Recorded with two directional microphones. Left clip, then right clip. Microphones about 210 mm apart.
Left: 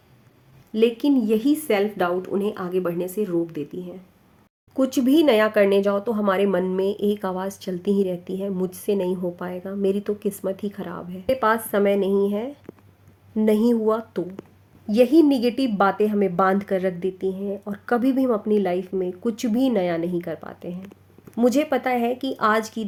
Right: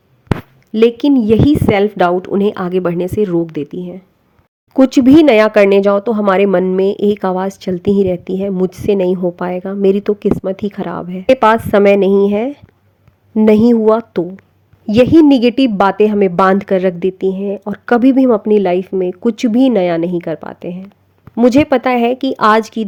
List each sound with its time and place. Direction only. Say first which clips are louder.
0.7 s speech: right 9 dB; 40° right (ahead or behind)